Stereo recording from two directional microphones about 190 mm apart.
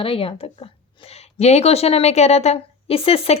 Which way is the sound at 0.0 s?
30° left (ahead or behind).